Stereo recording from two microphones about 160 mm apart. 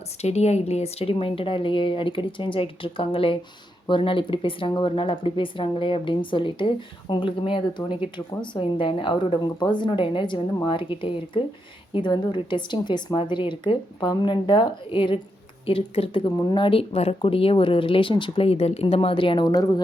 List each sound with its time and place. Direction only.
0.2 s a woman's voice: 45° left (ahead or behind); by 19.8 s 25° left (ahead or behind)